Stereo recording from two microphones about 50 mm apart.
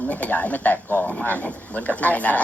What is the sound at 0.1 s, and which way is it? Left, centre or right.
Speech, left.